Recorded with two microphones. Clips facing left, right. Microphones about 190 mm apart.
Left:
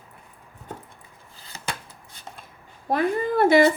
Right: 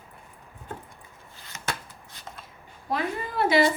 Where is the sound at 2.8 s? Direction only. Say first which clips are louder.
Left 7 dB; 50° left (ahead or behind).